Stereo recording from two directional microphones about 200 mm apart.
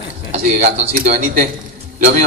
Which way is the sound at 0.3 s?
35° right (ahead or behind).